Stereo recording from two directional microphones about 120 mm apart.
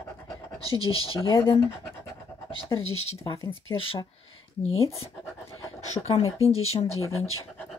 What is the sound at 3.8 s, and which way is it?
Speech, 50° left (ahead or behind).